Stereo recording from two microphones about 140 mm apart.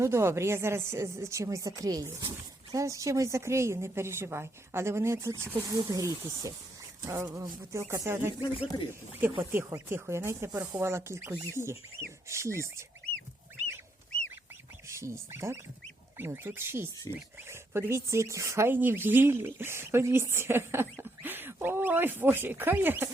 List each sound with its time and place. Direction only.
0.0 s a woman's voice: 20° right (ahead or behind)
8.5 s speech: 35° left (ahead or behind)
9.4 s a woman's voice: 20° right (ahead or behind)
14.8 s speech: 20° right (ahead or behind)